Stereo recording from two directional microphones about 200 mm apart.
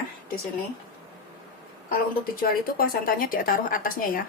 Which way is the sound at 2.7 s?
45° left (ahead or behind).